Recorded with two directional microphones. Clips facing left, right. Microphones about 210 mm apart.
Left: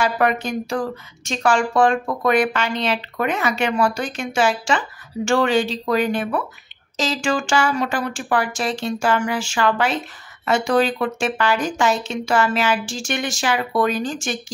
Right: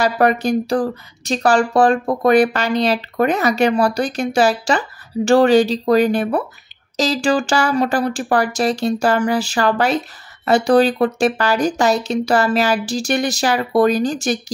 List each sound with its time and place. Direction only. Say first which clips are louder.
0.0 s speech: right 4 dB; 35° right (ahead or behind)